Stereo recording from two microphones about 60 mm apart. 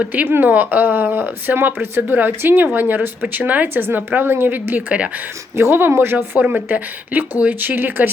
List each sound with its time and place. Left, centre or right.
0.0 s speech: right
5.5 s speech: right
6.4 s speech: right